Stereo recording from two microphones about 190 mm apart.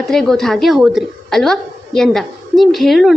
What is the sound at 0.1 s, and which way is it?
A woman's voice, centre (ahead or behind).